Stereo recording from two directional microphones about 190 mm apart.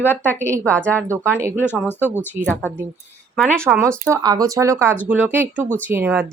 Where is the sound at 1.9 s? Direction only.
10° left (ahead or behind).